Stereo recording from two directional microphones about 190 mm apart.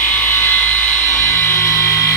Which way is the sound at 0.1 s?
10° left (ahead or behind).